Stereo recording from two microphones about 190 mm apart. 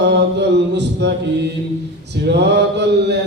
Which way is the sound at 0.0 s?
65° right (ahead or behind).